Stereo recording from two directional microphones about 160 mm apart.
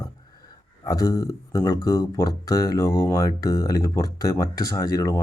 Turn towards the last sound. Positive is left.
turn(degrees=20)  # may be behind; listen again after turning